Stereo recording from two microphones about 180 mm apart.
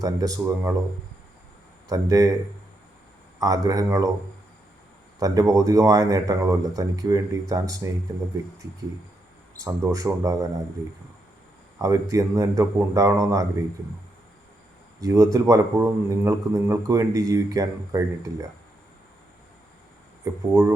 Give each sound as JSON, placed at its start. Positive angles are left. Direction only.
{"t": 0.0, "sound": "speech", "side_deg": -20}
{"t": 1.9, "sound": "speech", "side_deg": -20}
{"t": 3.3, "sound": "speech", "side_deg": -20}
{"t": 5.2, "sound": "speech", "side_deg": -20}
{"t": 9.6, "sound": "speech", "side_deg": -20}
{"t": 11.8, "sound": "a man's voice", "side_deg": -15}
{"t": 15.0, "sound": "a man's voice", "side_deg": -20}
{"t": 20.5, "sound": "speech", "side_deg": -20}